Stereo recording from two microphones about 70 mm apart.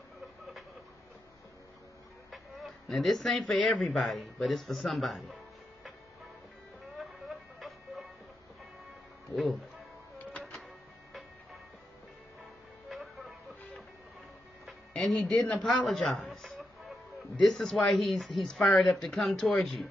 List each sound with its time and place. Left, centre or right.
2.3 s speech: centre
7.0 s music: centre
12.9 s music: centre
15.0 s speech: centre
16.3 s a sound: centre
17.4 s speech: centre